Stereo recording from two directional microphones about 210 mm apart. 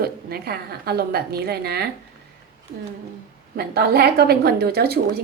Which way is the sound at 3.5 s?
45° right (ahead or behind).